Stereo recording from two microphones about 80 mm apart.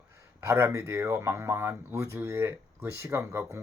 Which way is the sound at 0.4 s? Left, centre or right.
Right.